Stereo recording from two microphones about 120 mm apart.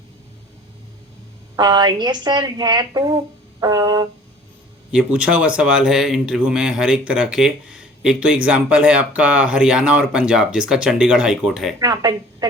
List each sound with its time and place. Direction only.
1.5 s a woman's voice: 35° right (ahead or behind)
4.9 s a man's voice: 10° right (ahead or behind)
11.8 s a woman's voice: 35° right (ahead or behind)